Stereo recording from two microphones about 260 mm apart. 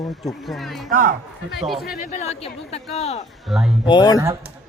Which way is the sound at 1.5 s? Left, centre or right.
Centre.